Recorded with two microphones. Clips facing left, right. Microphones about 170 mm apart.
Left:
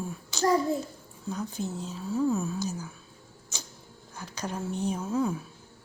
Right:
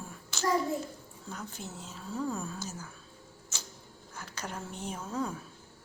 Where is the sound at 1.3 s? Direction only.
15° left (ahead or behind).